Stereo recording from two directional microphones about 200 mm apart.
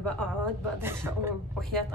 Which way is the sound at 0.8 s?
10° right (ahead or behind).